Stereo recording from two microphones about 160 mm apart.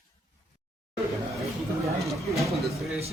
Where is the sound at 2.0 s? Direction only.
Centre (ahead or behind).